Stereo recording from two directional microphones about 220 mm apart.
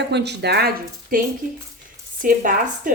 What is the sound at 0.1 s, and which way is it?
Speech, 50° right (ahead or behind).